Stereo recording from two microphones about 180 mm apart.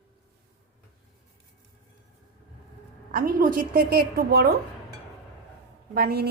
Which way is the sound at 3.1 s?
50° right (ahead or behind).